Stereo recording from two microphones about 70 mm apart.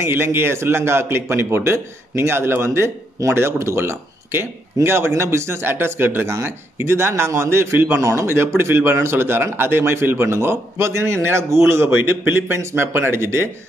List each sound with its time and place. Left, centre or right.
0.0 s speech: right